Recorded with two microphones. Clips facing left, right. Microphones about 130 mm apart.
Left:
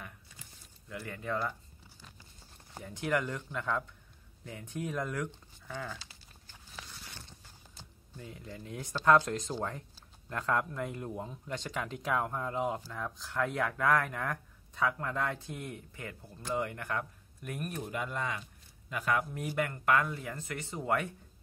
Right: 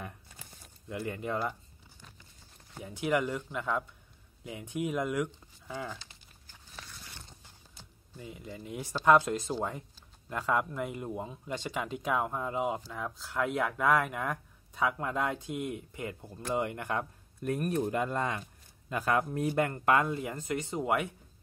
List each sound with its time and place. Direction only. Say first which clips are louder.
0.8 s speech: right 4 dB; 20° right (ahead or behind)
2.8 s speech: right 3 dB; 5° right (ahead or behind)
8.2 s speech: right 2 dB; 5° right (ahead or behind)
17.4 s a man's voice: right 9 dB; 35° right (ahead or behind); by 21.1 s 15° right (ahead or behind)